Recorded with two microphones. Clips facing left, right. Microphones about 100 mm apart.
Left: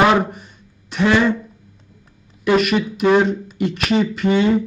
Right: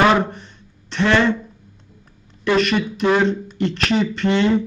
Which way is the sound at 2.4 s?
5° left (ahead or behind).